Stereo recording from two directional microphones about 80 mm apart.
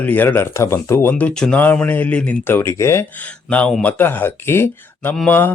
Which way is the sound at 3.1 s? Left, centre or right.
Centre.